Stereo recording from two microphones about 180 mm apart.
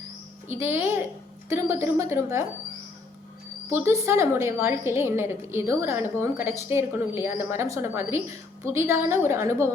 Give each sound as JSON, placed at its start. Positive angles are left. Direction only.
{"t": 0.4, "sound": "a woman's voice", "side_deg": -10}
{"t": 3.7, "sound": "a woman's voice", "side_deg": -15}